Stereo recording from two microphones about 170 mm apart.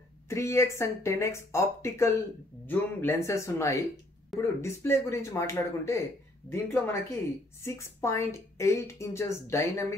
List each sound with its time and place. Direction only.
0.3 s speech: 15° left (ahead or behind)